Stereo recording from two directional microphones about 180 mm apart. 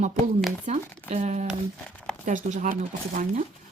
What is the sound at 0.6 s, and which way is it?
Speech, 40° right (ahead or behind).